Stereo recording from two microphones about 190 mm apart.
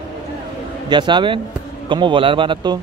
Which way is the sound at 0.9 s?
25° right (ahead or behind).